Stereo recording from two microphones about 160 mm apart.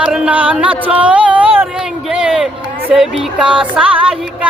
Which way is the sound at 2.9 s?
5° right (ahead or behind).